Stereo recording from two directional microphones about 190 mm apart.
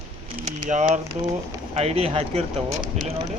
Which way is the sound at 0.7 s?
40° right (ahead or behind).